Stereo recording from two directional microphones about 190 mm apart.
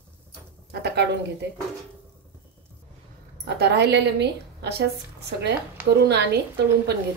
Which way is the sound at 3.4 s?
60° right (ahead or behind).